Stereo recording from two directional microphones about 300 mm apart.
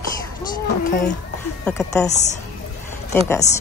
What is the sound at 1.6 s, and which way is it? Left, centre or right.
Speech, centre.